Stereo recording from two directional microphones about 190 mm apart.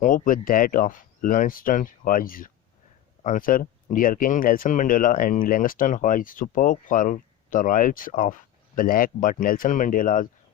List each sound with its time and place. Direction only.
0.0 s speech: 45° left (ahead or behind)